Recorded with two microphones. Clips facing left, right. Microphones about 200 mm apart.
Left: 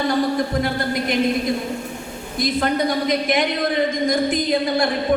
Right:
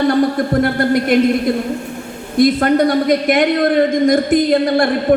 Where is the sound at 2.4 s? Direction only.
55° right (ahead or behind).